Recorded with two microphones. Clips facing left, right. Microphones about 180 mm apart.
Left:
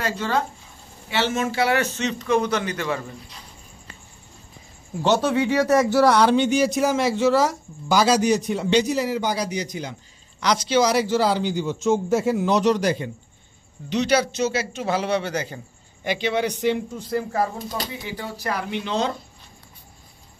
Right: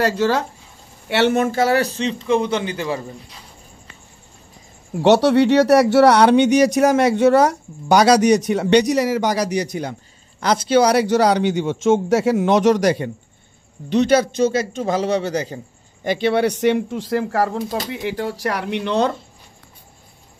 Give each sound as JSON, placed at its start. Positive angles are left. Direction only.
{"t": 0.0, "sound": "a man's voice", "side_deg": -75}
{"t": 4.9, "sound": "speech", "side_deg": -70}
{"t": 10.4, "sound": "speech", "side_deg": -55}
{"t": 13.9, "sound": "a man's voice", "side_deg": -50}
{"t": 14.8, "sound": "a man's voice", "side_deg": -40}
{"t": 18.0, "sound": "speech", "side_deg": -70}